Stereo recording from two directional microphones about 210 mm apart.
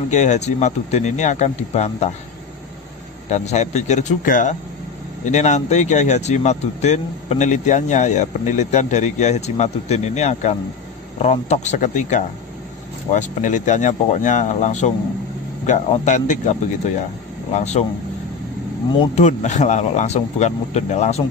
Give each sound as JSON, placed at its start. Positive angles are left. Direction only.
{"t": 0.1, "sound": "speech", "side_deg": 35}
{"t": 3.3, "sound": "speech", "side_deg": 35}
{"t": 19.1, "sound": "speech", "side_deg": 35}